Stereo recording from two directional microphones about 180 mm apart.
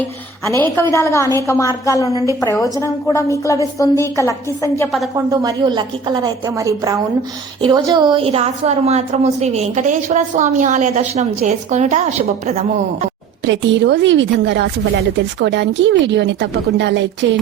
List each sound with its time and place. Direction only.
0.4 s a woman's voice: 15° left (ahead or behind)
5.1 s a woman's voice: 20° right (ahead or behind); by 12.6 s 40° right (ahead or behind)
13.4 s a woman's voice: 85° right